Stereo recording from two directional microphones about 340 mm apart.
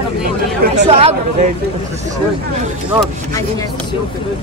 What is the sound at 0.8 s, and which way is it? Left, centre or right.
Speech, centre.